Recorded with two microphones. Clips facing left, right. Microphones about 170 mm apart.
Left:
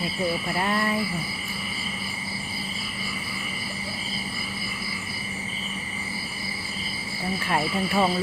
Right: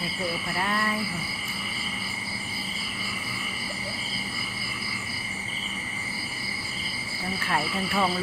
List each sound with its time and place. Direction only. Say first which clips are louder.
0.6 s speech: left 2 dB; 25° left (ahead or behind)
7.5 s speech: left 3 dB; 20° left (ahead or behind)